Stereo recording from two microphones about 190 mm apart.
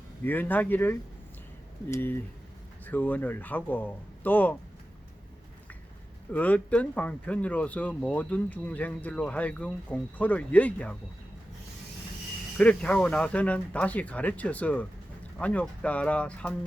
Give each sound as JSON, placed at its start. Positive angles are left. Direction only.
{"t": 0.3, "sound": "speech", "side_deg": 10}
{"t": 6.3, "sound": "speech", "side_deg": 10}
{"t": 12.5, "sound": "speech", "side_deg": 5}